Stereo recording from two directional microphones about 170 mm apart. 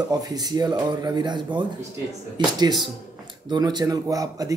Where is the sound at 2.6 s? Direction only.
25° right (ahead or behind).